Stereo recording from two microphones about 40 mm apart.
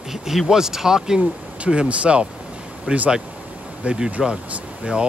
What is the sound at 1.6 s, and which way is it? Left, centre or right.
Speech, right.